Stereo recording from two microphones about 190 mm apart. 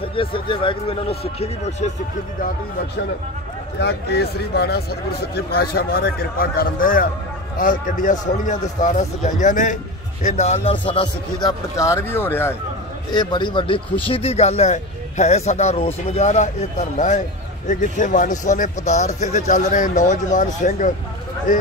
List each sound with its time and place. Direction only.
0.0 s speech: 30° left (ahead or behind)
3.8 s speech: 60° left (ahead or behind); by 12.5 s 10° left (ahead or behind)
13.1 s speech: 25° left (ahead or behind); by 20.9 s 40° left (ahead or behind)